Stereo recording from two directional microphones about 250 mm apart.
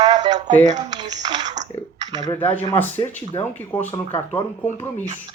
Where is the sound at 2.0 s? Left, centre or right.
Centre.